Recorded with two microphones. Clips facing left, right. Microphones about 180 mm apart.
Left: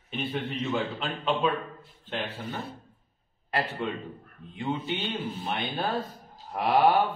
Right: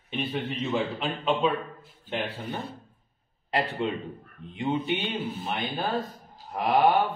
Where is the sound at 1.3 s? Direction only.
25° right (ahead or behind).